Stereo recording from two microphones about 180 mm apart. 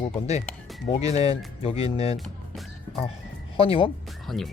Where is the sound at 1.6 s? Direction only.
35° left (ahead or behind).